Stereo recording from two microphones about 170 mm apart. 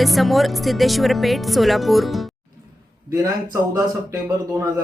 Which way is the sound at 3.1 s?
20° right (ahead or behind).